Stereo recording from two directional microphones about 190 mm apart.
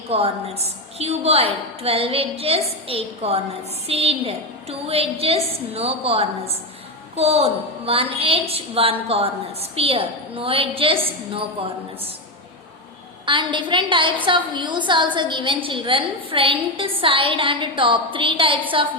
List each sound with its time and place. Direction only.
0.1 s a woman's voice: 30° right (ahead or behind)
13.2 s a woman's voice: 25° right (ahead or behind)